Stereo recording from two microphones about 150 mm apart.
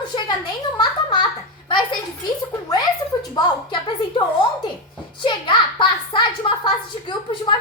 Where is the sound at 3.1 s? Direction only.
30° left (ahead or behind).